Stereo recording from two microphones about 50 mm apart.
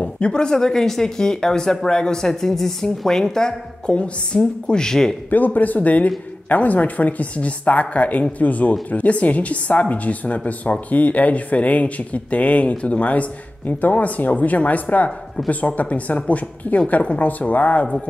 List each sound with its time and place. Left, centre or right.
0.0 s speech: left
3.9 s a woman's voice: left
4.4 s speech: centre
5.3 s a woman's voice: left
15.0 s speech: centre
15.6 s a woman's voice: left